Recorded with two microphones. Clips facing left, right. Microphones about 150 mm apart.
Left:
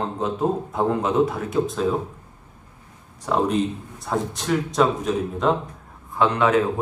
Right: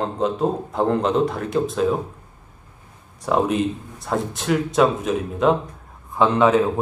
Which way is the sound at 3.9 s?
Centre (ahead or behind).